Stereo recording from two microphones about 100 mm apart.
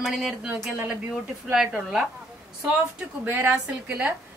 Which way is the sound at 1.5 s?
5° right (ahead or behind).